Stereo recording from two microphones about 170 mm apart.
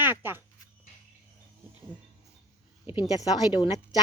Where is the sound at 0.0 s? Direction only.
10° right (ahead or behind).